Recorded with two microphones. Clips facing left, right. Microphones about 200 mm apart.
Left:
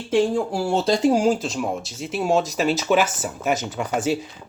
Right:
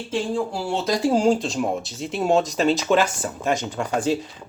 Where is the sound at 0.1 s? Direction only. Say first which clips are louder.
Left 5 dB; 45° left (ahead or behind).